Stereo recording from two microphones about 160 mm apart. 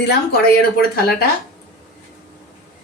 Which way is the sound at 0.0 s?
90° left.